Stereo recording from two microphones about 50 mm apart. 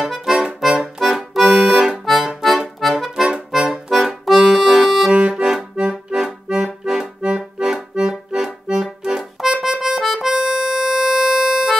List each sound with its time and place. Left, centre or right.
0.0 s music: centre
0.7 s accordion: centre
2.0 s accordion: centre
2.8 s music: centre
3.5 s accordion: centre
7.2 s accordion: right
7.6 s accordion: centre
9.9 s music: centre